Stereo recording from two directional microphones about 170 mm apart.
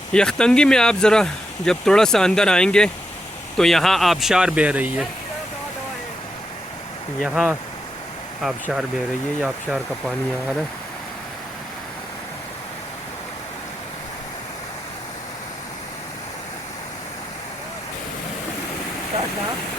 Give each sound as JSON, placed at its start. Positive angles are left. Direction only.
{"t": 0.1, "sound": "speech", "side_deg": 5}
{"t": 7.3, "sound": "speech", "side_deg": -5}
{"t": 9.4, "sound": "speech", "side_deg": 0}